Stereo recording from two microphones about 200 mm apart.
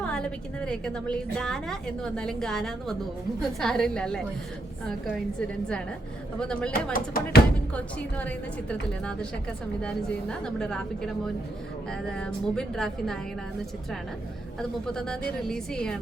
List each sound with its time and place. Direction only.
0.0 s a woman's voice: 5° left (ahead or behind)
6.4 s a woman's voice: 5° left (ahead or behind)
6.9 s speech: 45° left (ahead or behind)
7.7 s a woman's voice: 5° left (ahead or behind)
14.8 s a woman's voice: 5° left (ahead or behind)